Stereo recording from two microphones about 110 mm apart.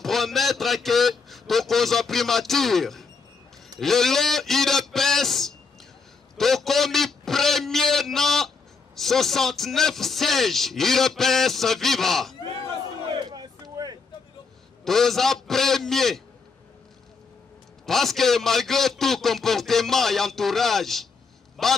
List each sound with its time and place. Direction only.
0.0 s a man's voice: centre (ahead or behind)
13.0 s a sound: 40° right (ahead or behind)
14.9 s a man's voice: centre (ahead or behind)
17.8 s a man's voice: 5° left (ahead or behind)